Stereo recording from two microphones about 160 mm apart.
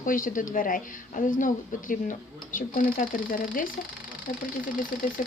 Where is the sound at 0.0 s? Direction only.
55° left (ahead or behind).